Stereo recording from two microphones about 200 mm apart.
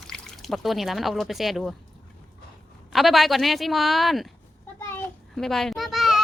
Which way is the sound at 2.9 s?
Centre (ahead or behind).